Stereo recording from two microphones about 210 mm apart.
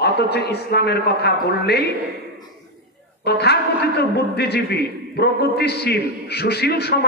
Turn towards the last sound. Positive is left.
turn(degrees=50)  # may be behind; listen again after turning